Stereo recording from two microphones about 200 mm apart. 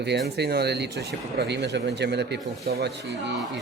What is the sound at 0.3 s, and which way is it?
Speech, 55° right (ahead or behind).